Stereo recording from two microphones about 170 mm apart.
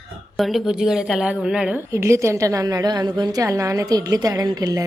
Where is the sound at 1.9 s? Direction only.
15° right (ahead or behind).